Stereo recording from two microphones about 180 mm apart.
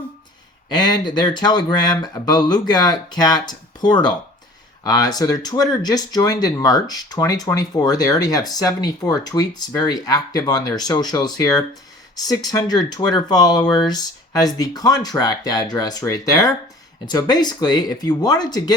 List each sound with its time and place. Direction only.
0.7 s speech: 20° left (ahead or behind)